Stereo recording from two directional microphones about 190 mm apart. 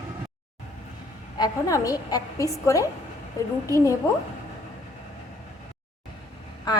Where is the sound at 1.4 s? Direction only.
20° left (ahead or behind).